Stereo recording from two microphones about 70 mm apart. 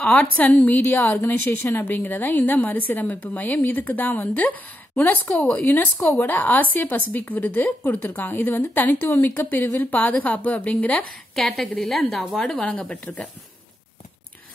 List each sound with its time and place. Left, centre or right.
0.0 s a woman's voice: centre
11.3 s a woman's voice: centre